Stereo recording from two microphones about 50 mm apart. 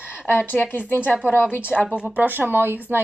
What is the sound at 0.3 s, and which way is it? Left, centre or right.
A woman's voice, left.